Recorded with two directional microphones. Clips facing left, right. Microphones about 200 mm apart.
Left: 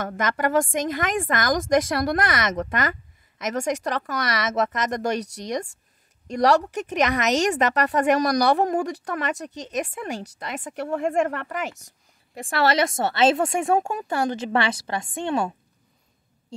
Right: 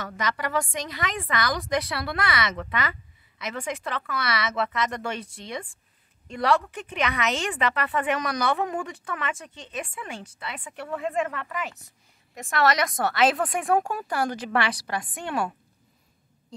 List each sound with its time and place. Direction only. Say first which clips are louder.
0.0 s a woman's voice: left 5 dB; 50° left (ahead or behind)
12.4 s speech: left 2 dB; 30° left (ahead or behind)